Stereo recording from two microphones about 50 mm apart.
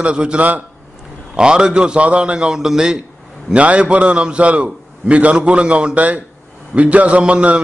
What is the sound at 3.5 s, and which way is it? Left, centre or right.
A man's voice, right.